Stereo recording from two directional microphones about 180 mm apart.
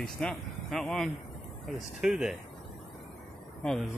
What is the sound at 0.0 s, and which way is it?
Speech, 5° left (ahead or behind).